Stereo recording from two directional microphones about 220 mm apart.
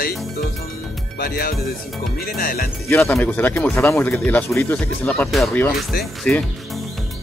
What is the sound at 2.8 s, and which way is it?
Speech, 10° left (ahead or behind).